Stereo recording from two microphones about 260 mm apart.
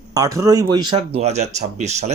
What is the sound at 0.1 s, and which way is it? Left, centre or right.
Speech, centre.